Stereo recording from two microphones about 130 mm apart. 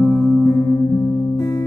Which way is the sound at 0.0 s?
Centre (ahead or behind).